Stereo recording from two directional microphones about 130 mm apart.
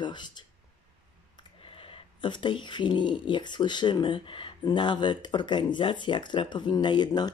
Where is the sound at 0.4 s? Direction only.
35° left (ahead or behind).